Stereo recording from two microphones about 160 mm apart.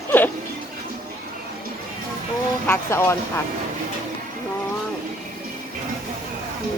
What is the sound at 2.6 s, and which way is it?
Speech, 15° left (ahead or behind).